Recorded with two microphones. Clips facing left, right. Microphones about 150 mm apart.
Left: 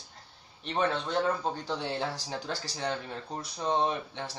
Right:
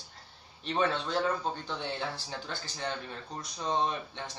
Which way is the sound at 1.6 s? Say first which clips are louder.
Left 3 dB; 40° left (ahead or behind).